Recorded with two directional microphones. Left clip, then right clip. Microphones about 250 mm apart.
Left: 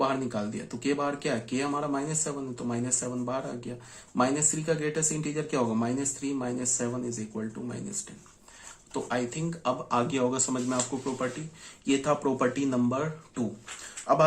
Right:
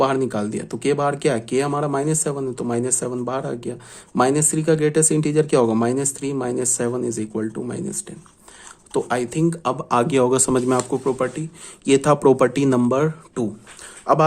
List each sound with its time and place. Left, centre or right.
0.0 s speech: right
8.9 s speech: right